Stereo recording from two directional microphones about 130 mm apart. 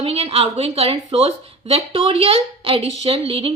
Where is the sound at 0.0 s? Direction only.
50° right (ahead or behind).